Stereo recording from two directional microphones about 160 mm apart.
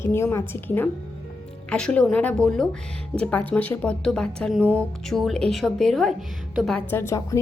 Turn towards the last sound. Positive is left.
turn(degrees=20)  # may be behind; listen again after turning